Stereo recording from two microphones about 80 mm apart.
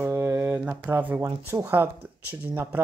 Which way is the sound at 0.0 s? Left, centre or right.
Right.